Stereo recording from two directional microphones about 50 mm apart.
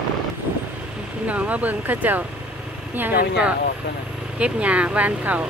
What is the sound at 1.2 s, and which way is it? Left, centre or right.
Speech, right.